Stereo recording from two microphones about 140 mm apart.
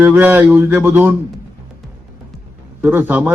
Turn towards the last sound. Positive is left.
turn(degrees=-15)  # may be behind; listen again after turning